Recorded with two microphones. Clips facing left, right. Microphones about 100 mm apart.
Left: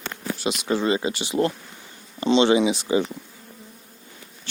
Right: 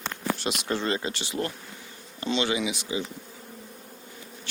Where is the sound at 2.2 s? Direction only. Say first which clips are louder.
Left 9 dB; 25° left (ahead or behind).